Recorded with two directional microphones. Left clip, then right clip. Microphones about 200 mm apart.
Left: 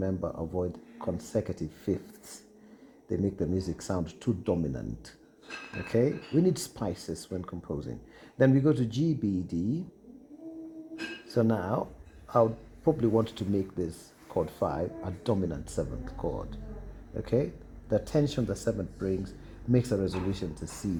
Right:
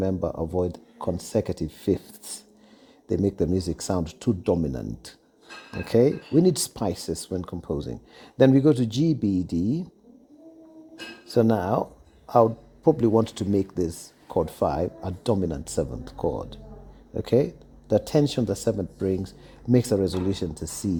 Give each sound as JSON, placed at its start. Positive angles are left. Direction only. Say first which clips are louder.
{"t": 0.0, "sound": "speech", "louder": "right 6 dB", "side_deg": -50}
{"t": 5.8, "sound": "speech", "louder": "right 7 dB", "side_deg": -70}
{"t": 11.3, "sound": "speech", "louder": "right 7 dB", "side_deg": -60}